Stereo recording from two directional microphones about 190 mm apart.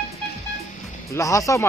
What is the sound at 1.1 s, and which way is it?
Speech, 15° left (ahead or behind).